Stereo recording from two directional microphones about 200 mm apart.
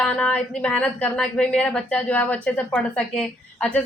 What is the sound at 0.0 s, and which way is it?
A woman's voice, 5° left (ahead or behind).